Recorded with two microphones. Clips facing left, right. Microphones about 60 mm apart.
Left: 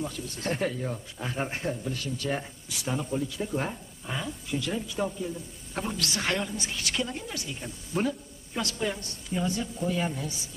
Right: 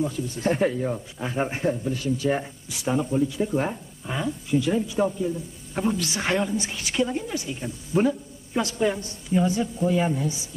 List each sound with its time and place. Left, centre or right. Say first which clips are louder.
0.0 s speech: right 8 dB; centre
0.7 s speech: right 6 dB; centre
1.3 s speech: right 7 dB; centre